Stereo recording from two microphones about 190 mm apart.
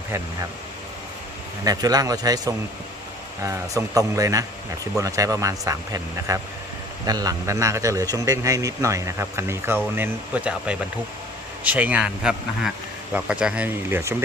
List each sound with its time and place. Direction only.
1.6 s a man's voice: 20° right (ahead or behind)